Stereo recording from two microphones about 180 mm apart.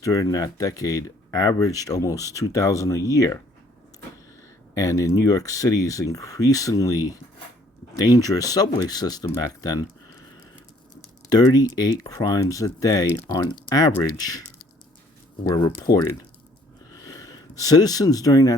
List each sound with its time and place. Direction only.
0.0 s speech: 20° left (ahead or behind)
4.7 s speech: 20° left (ahead or behind)
11.3 s speech: 20° left (ahead or behind)
15.4 s speech: 25° left (ahead or behind)
16.9 s a sound: 20° left (ahead or behind)